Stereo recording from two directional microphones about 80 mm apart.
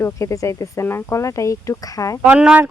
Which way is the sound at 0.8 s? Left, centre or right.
Left.